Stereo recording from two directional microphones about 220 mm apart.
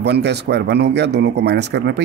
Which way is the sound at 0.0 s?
50° right (ahead or behind).